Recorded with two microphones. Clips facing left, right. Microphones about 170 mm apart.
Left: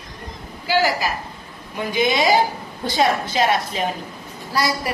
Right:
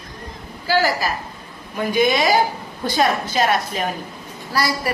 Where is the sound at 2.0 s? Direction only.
25° left (ahead or behind).